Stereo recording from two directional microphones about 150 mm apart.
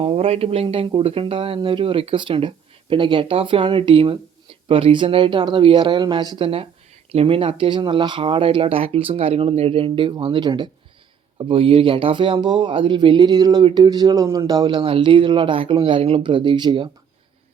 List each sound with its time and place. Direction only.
0.0 s speech: 40° right (ahead or behind)